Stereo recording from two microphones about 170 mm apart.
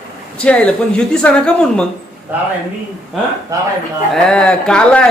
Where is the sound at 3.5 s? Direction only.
20° right (ahead or behind).